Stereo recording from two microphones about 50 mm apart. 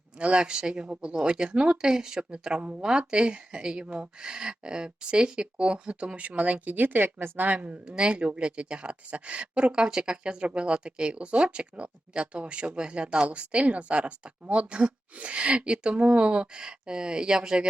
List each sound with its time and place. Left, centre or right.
0.2 s speech: centre